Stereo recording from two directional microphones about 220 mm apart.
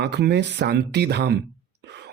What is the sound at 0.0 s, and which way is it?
Speech, 50° right (ahead or behind).